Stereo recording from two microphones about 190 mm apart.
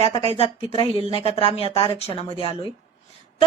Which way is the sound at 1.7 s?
15° left (ahead or behind).